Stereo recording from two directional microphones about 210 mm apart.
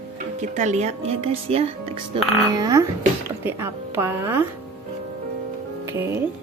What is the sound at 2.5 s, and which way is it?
A woman's voice, 15° right (ahead or behind).